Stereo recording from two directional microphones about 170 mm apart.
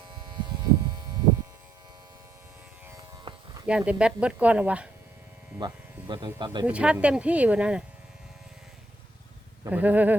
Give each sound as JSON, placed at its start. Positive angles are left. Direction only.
{"t": 0.1, "sound": "electric shaver", "side_deg": -25}
{"t": 3.3, "sound": "electric shaver", "side_deg": -25}
{"t": 3.7, "sound": "speech", "side_deg": -5}
{"t": 5.5, "sound": "speech", "side_deg": -25}
{"t": 6.7, "sound": "speech", "side_deg": -5}
{"t": 9.6, "sound": "speech", "side_deg": -10}